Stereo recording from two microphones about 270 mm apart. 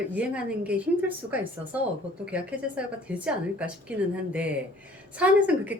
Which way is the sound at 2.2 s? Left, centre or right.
Centre.